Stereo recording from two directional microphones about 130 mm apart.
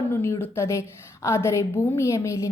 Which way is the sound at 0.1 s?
20° left (ahead or behind).